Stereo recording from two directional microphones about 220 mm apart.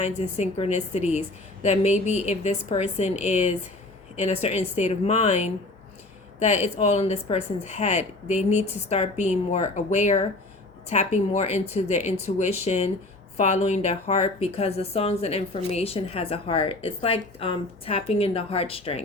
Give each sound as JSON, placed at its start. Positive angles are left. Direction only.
{"t": 0.0, "sound": "a woman's voice", "side_deg": 30}